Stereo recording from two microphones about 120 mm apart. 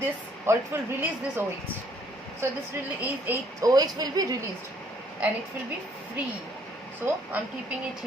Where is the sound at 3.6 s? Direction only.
30° right (ahead or behind).